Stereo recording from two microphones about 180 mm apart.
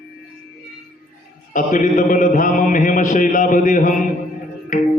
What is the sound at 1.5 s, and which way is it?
A man's voice, 45° left (ahead or behind).